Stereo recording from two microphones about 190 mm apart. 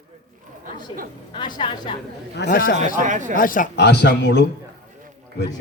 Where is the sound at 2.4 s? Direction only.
50° left (ahead or behind).